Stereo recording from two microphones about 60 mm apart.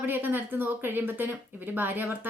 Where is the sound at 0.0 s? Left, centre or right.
Right.